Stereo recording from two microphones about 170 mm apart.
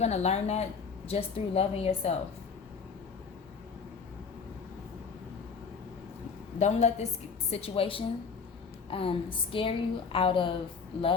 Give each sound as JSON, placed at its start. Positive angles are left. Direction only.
{"t": 0.0, "sound": "a woman's voice", "side_deg": 40}
{"t": 6.6, "sound": "a woman's voice", "side_deg": 40}